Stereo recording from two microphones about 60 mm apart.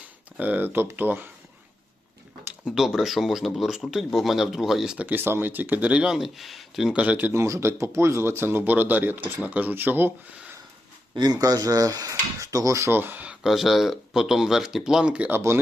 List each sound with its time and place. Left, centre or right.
0.3 s speech: right
2.7 s speech: centre
4.9 s speech: right
6.1 s speech: centre
6.9 s speech: right
7.3 s speech: right
11.3 s speech: right
12.9 s speech: right
13.4 s speech: centre